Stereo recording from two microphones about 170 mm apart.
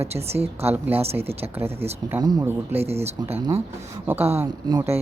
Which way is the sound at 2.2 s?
25° right (ahead or behind).